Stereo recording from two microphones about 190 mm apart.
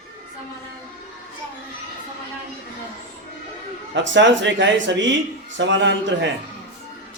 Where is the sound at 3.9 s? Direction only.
70° right (ahead or behind).